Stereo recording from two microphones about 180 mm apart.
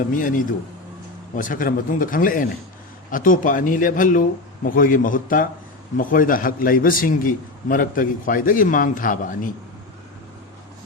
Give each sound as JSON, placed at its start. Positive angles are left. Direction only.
{"t": 0.2, "sound": "a man's voice", "side_deg": 50}